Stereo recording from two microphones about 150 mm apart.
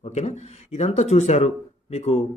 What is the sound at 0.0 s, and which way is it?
Speech, 45° left (ahead or behind).